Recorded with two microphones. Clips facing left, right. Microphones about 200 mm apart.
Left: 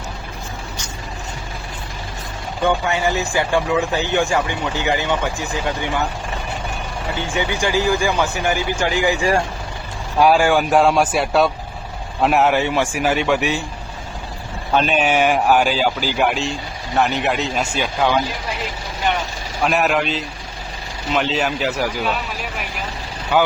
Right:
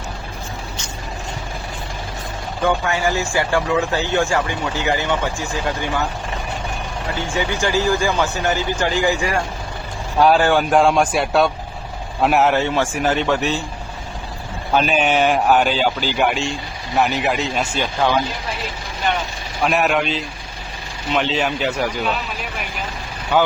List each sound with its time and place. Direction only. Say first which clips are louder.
2.6 s speech: even; 20° left (ahead or behind)
7.3 s speech: even; 15° left (ahead or behind); by 12.5 s centre (ahead or behind)
12.5 s speech: even; 15° left (ahead or behind)
14.7 s speech: even; centre (ahead or behind)
19.6 s speech: even; centre (ahead or behind)
23.3 s speech: even; 10° left (ahead or behind)